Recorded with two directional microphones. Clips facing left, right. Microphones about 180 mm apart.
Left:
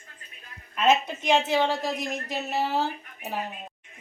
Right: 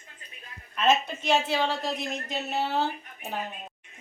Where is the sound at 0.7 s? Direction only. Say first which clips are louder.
Left 2 dB; 15° left (ahead or behind).